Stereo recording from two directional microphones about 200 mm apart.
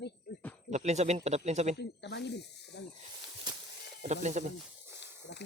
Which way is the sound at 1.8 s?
60° left (ahead or behind).